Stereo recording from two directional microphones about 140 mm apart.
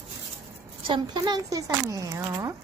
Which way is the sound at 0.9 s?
30° right (ahead or behind).